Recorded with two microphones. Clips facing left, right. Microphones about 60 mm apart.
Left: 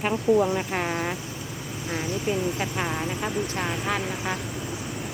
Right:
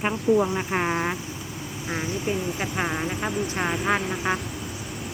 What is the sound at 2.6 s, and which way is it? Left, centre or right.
Speech, centre.